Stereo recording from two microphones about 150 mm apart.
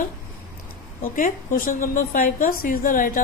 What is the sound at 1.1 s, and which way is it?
A woman's voice, 65° left (ahead or behind).